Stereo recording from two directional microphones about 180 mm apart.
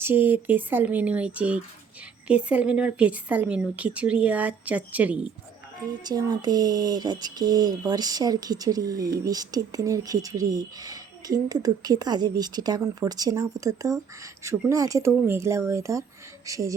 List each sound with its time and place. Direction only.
0.0 s a woman's voice: 10° right (ahead or behind)
6.1 s a woman's voice: 20° right (ahead or behind)